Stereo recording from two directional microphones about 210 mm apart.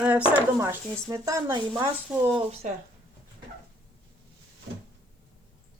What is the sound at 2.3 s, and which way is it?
Speech, 30° right (ahead or behind).